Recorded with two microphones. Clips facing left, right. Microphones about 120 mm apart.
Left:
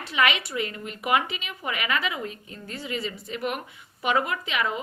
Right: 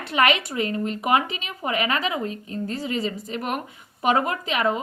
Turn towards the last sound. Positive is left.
turn(degrees=-35)  # may be behind; listen again after turning